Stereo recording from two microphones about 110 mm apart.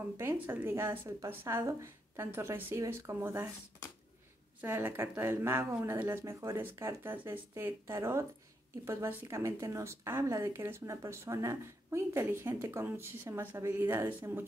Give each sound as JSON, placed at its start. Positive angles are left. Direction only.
{"t": 0.2, "sound": "speech", "side_deg": -20}
{"t": 4.6, "sound": "speech", "side_deg": -20}